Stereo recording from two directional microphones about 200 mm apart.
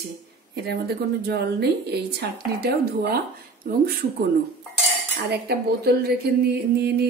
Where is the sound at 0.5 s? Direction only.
55° right (ahead or behind).